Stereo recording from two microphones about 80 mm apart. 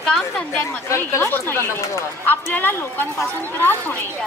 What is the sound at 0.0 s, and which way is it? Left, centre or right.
Speech, centre.